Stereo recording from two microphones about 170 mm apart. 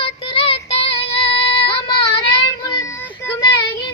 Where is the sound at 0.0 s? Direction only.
35° left (ahead or behind).